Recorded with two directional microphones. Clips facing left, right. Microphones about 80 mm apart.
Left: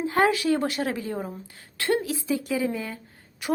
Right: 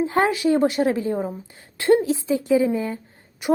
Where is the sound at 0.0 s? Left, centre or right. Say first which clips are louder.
Right 2 dB; right.